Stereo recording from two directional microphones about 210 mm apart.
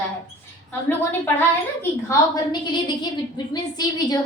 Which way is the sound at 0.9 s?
10° left (ahead or behind).